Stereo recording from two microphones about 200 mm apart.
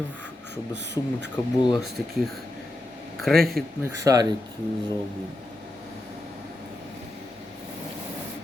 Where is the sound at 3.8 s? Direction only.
15° right (ahead or behind).